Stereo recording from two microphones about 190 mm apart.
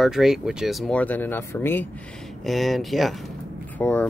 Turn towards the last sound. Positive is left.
turn(degrees=10)  # may be behind; listen again after turning